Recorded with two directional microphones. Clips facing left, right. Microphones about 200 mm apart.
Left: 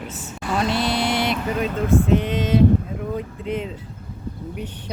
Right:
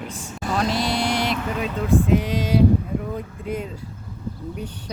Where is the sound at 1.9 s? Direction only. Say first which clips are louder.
Even; 15° right (ahead or behind).